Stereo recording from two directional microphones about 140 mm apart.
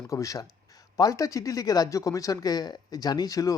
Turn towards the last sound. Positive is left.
turn(degrees=25)  # may be behind; listen again after turning